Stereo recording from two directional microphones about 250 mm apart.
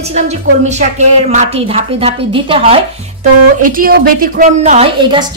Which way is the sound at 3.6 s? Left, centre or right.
Right.